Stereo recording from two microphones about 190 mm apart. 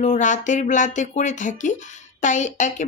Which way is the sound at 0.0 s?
40° left (ahead or behind).